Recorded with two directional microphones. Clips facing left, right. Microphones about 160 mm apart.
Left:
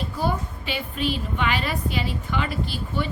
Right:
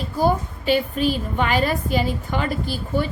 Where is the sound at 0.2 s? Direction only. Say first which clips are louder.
Right 7 dB; 40° right (ahead or behind).